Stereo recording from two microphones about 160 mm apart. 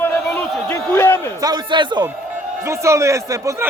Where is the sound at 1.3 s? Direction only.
25° right (ahead or behind).